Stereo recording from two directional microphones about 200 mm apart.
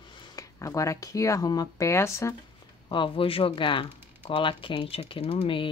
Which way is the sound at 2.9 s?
25° left (ahead or behind).